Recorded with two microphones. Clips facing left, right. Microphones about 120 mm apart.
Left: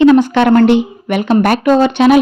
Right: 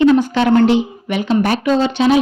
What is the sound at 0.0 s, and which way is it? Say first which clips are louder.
Speech: left 4 dB; 75° left (ahead or behind).